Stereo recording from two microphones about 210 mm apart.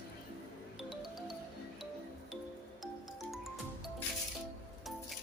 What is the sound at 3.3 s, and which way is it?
Music, centre (ahead or behind).